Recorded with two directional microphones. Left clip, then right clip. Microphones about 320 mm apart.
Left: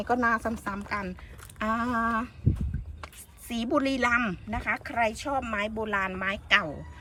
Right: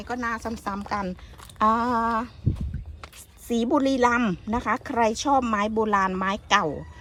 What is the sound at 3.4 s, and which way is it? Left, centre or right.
Speech, centre.